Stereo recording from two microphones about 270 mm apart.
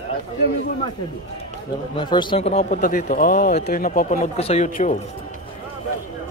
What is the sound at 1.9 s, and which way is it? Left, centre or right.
Speech, centre.